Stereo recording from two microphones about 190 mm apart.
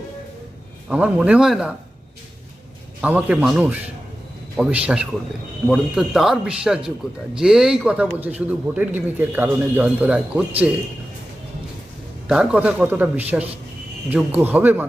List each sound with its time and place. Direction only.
0.9 s speech: 5° right (ahead or behind)
3.0 s speech: 5° right (ahead or behind)
12.3 s speech: 5° right (ahead or behind)